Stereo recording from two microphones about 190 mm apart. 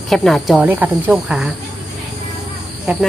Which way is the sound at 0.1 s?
Centre (ahead or behind).